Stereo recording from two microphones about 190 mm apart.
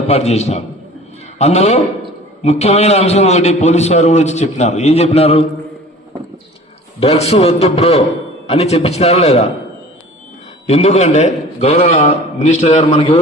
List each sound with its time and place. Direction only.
0.1 s a man's voice: 35° left (ahead or behind)
7.0 s a man's voice: 35° left (ahead or behind)
10.7 s a man's voice: 35° left (ahead or behind)